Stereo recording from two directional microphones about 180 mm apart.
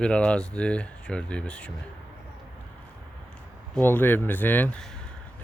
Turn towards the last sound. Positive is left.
turn(degrees=10)  # may be behind; listen again after turning